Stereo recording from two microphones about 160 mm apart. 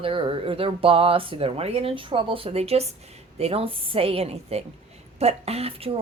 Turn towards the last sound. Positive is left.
turn(degrees=-35)  # may be behind; listen again after turning